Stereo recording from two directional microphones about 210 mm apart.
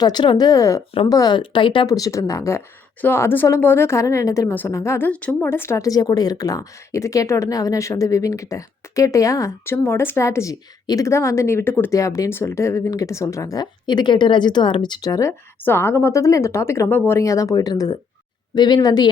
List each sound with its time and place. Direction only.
0.0 s a woman's voice: 20° left (ahead or behind)